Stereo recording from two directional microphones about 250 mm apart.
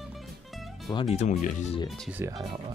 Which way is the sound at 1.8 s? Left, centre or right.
Centre.